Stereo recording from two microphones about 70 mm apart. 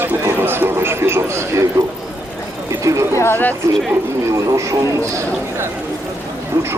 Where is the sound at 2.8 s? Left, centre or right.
Right.